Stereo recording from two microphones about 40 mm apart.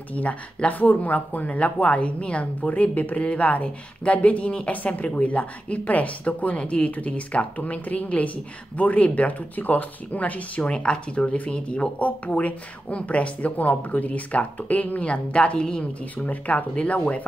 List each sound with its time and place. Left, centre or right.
0.1 s speech: left
10.6 s speech: left
15.8 s speech: left